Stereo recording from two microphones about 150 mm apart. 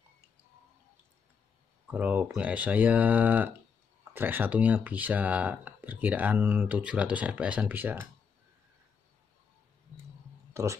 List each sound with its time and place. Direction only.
1.9 s speech: 10° right (ahead or behind)
10.5 s speech: 20° right (ahead or behind)